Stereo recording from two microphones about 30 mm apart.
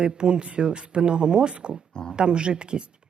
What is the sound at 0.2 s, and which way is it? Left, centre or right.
Speech, right.